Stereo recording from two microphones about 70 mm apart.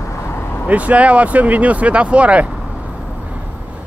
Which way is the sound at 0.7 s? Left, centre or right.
Centre.